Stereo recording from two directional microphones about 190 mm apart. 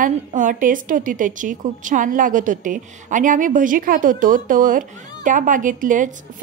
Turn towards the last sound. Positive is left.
turn(degrees=-45)  # may be behind; listen again after turning